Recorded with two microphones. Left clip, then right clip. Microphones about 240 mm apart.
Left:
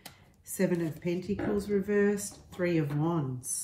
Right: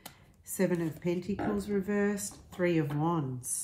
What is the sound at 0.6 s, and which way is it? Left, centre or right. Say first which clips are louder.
Speech: left 1 dB; right.